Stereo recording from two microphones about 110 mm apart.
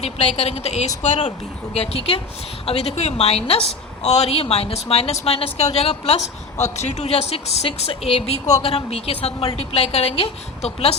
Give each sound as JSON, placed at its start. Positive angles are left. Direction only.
{"t": 0.0, "sound": "a woman's voice", "side_deg": 75}
{"t": 1.7, "sound": "a woman's voice", "side_deg": 65}